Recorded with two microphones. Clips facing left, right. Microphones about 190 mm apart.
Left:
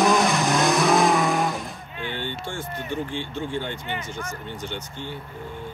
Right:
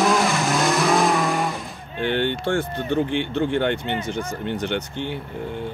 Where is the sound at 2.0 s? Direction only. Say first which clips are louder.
Right 10 dB; 70° right (ahead or behind).